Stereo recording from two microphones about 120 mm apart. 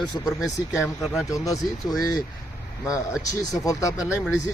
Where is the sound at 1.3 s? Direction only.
30° left (ahead or behind).